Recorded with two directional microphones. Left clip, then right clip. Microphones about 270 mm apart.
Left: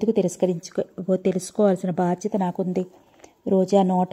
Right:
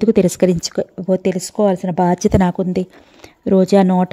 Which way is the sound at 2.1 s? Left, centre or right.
Right.